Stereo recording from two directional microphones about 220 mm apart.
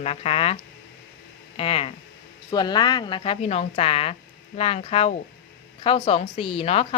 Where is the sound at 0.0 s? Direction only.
30° left (ahead or behind).